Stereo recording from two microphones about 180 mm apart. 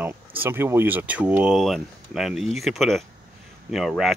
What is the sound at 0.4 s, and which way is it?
Speech, 10° right (ahead or behind).